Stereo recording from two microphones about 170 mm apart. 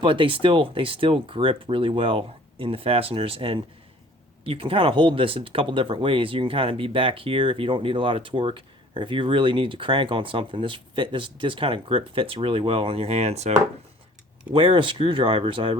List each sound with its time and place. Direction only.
0.0 s speech: 30° right (ahead or behind)
14.5 s speech: 30° right (ahead or behind)